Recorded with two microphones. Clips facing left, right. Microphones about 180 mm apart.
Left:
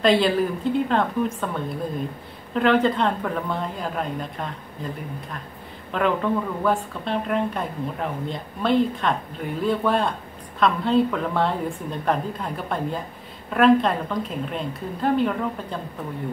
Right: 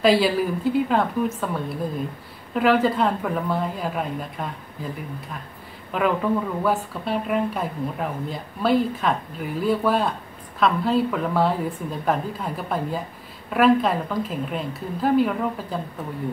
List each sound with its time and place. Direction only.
0.0 s speech: 5° right (ahead or behind)
5.9 s speech: 5° right (ahead or behind)